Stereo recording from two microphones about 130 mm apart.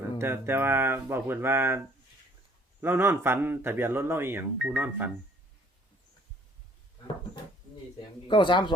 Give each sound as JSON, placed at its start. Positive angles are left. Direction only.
{"t": 0.2, "sound": "speech", "side_deg": -20}
{"t": 2.8, "sound": "speech", "side_deg": -20}
{"t": 8.3, "sound": "speech", "side_deg": 40}